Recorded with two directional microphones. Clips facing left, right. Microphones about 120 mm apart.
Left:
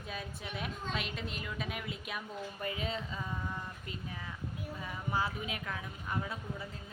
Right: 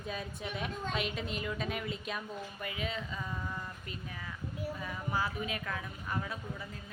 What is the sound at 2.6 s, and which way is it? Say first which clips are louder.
Speech: left 2 dB; 30° left (ahead or behind).